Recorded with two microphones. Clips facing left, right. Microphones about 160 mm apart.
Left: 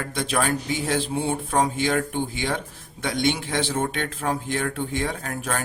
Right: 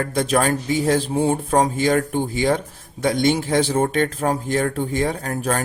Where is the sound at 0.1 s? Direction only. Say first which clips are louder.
Right 3 dB; 45° right (ahead or behind).